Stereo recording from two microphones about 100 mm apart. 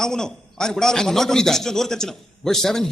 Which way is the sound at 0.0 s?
5° left (ahead or behind).